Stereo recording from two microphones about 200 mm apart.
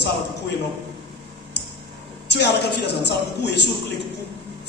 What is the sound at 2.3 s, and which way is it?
Speech, 60° left (ahead or behind).